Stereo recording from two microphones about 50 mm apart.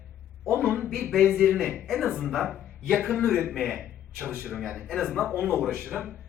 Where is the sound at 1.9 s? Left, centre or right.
Centre.